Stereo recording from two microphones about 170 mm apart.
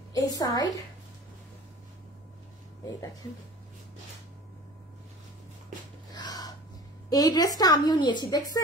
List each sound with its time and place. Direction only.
0.1 s a woman's voice: 20° left (ahead or behind)
6.1 s a sound: 25° left (ahead or behind)
7.1 s a woman's voice: 25° left (ahead or behind)